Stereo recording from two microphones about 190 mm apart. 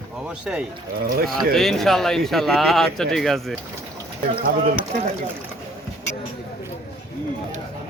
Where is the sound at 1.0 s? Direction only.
50° right (ahead or behind).